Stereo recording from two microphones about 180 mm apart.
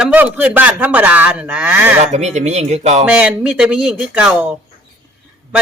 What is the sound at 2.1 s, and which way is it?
Speech, 40° right (ahead or behind).